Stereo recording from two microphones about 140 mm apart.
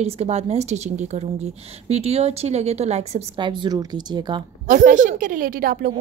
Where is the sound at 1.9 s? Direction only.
50° right (ahead or behind).